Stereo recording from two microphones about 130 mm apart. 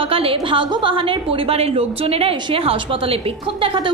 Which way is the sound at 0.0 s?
45° right (ahead or behind).